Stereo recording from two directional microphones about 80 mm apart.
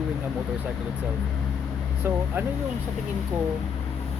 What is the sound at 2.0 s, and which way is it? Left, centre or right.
Speech, right.